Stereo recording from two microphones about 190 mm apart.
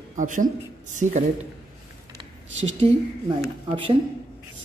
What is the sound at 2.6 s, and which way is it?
Speech, 30° right (ahead or behind).